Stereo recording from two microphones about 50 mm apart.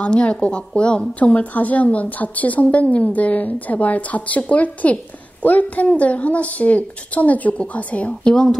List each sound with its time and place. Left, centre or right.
0.1 s a woman's voice: left
8.1 s a woman's voice: centre